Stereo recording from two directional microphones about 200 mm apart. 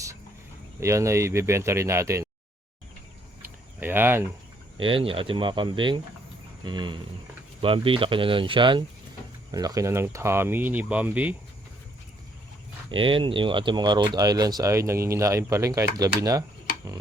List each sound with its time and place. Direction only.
0.8 s speech: 15° right (ahead or behind)
3.4 s a sound: 10° right (ahead or behind)
4.8 s speech: 25° right (ahead or behind); by 11.3 s 5° right (ahead or behind)
12.9 s speech: 25° right (ahead or behind)